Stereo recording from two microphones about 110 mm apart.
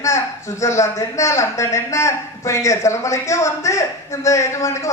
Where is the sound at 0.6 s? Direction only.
25° left (ahead or behind).